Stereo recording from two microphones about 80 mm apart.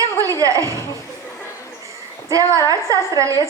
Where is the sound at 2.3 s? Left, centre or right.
Right.